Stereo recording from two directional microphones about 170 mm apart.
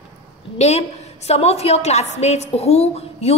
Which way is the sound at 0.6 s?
40° left (ahead or behind).